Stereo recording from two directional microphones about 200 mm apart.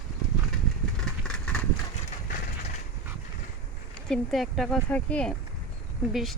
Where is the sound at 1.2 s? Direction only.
5° left (ahead or behind).